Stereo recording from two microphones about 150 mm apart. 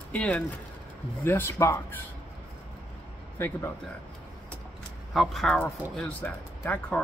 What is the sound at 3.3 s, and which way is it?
Speech, 15° left (ahead or behind).